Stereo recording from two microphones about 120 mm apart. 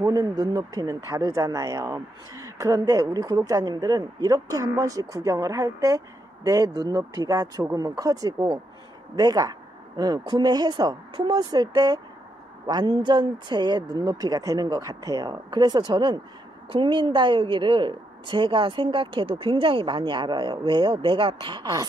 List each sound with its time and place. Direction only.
0.0 s a woman's voice: 30° right (ahead or behind)